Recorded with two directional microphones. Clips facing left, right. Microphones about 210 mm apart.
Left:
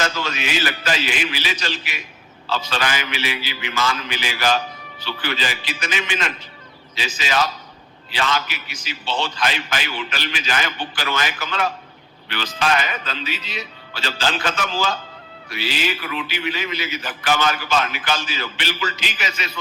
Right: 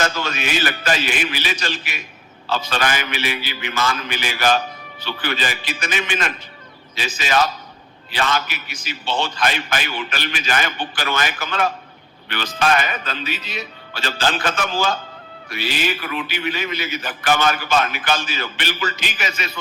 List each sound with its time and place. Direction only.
0.0 s a man's voice: 50° right (ahead or behind)